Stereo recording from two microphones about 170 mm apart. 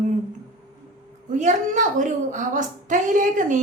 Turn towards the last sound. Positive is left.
turn(degrees=-50)  # may be behind; listen again after turning